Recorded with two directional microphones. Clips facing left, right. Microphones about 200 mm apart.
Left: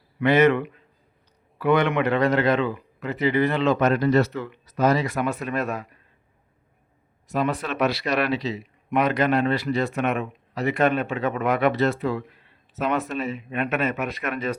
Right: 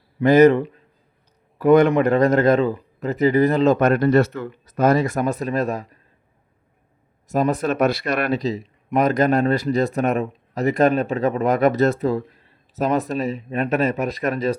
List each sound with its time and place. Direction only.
0.2 s speech: 40° right (ahead or behind)
7.3 s speech: 45° right (ahead or behind)